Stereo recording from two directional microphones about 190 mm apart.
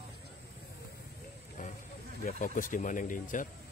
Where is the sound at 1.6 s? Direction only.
45° left (ahead or behind).